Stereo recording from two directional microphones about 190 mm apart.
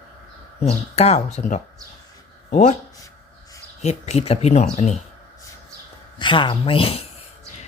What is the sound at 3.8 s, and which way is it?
Speech, 35° left (ahead or behind).